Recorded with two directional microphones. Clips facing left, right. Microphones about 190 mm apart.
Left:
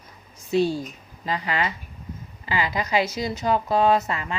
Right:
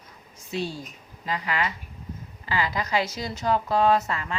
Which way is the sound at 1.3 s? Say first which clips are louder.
Left 2 dB; 25° left (ahead or behind).